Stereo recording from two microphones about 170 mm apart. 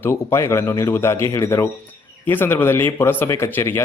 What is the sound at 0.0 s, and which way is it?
Speech, 15° left (ahead or behind).